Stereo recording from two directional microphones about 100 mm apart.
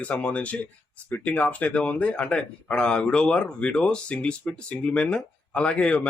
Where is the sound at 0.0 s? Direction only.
15° left (ahead or behind).